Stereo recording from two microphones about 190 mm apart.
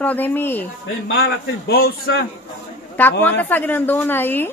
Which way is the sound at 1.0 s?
60° left (ahead or behind).